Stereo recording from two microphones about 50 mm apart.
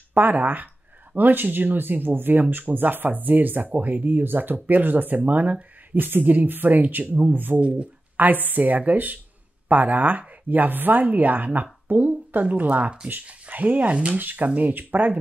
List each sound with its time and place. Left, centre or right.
0.1 s speech: right